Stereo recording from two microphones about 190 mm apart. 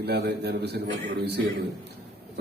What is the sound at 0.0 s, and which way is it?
Speech, 60° right (ahead or behind).